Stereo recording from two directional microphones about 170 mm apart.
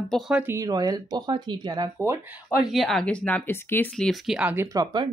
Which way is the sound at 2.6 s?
Centre (ahead or behind).